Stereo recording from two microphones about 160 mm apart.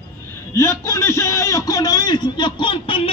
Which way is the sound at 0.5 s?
15° left (ahead or behind).